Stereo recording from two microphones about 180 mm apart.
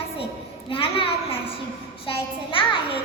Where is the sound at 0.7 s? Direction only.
30° left (ahead or behind).